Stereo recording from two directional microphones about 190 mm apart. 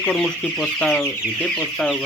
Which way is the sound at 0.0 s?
5° left (ahead or behind).